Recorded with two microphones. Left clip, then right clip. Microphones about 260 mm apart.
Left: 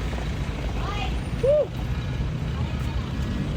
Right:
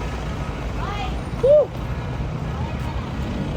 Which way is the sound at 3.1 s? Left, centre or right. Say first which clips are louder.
Right 3 dB; centre.